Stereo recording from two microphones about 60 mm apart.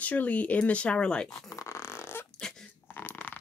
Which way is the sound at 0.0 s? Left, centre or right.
Left.